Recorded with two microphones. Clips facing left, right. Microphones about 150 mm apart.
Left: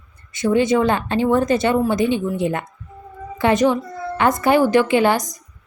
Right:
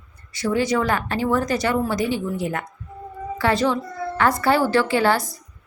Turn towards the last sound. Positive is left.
turn(degrees=20)  # may be behind; listen again after turning